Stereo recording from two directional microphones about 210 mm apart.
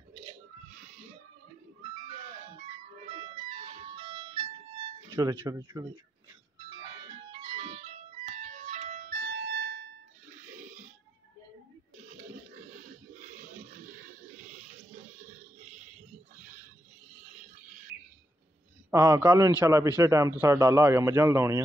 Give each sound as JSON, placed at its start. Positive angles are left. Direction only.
{"t": 3.9, "sound": "music", "side_deg": -20}
{"t": 5.1, "sound": "a man's voice", "side_deg": -10}
{"t": 7.1, "sound": "music", "side_deg": -25}
{"t": 10.4, "sound": "a sound", "side_deg": -35}
{"t": 17.3, "sound": "a sound", "side_deg": -35}
{"t": 18.9, "sound": "a man's voice", "side_deg": -15}